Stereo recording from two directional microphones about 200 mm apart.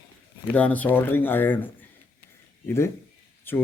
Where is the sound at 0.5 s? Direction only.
5° left (ahead or behind).